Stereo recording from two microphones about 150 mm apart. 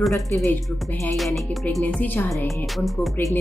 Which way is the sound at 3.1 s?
15° left (ahead or behind).